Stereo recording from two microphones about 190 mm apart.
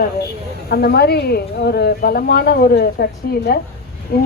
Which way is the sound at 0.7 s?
55° left (ahead or behind).